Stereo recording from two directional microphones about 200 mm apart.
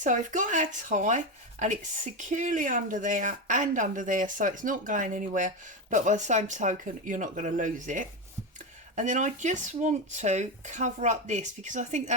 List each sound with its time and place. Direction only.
0.0 s speech: 40° right (ahead or behind)